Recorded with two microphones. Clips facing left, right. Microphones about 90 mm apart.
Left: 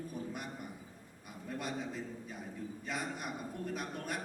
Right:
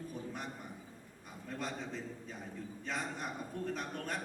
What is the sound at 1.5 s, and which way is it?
A man's voice, 10° left (ahead or behind).